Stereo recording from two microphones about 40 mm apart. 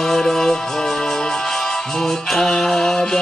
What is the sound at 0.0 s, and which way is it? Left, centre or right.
Music, centre.